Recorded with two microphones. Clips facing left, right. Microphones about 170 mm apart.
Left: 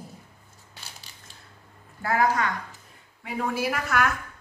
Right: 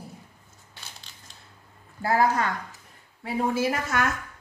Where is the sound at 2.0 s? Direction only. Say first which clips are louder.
Right 1 dB; 30° right (ahead or behind).